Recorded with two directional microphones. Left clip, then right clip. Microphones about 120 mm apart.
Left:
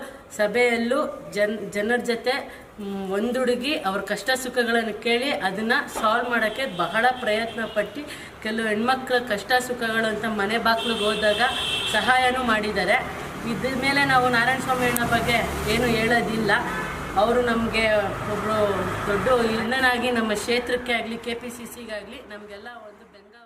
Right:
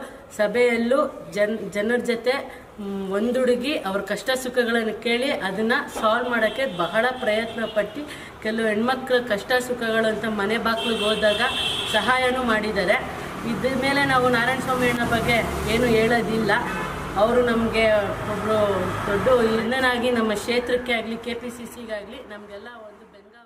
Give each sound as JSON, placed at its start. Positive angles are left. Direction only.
{"t": 0.3, "sound": "a woman's voice", "side_deg": 0}
{"t": 19.3, "sound": "a woman's voice", "side_deg": 0}